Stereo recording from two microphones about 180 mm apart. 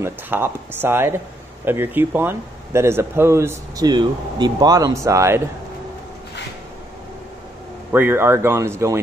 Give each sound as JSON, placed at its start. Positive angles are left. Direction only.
{"t": 0.0, "sound": "speech", "side_deg": -10}
{"t": 7.9, "sound": "speech", "side_deg": -10}